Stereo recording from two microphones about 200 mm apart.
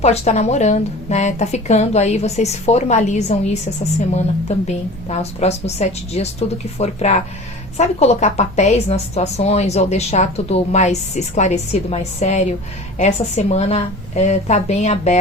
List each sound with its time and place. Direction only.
0.0 s a woman's voice: 35° left (ahead or behind)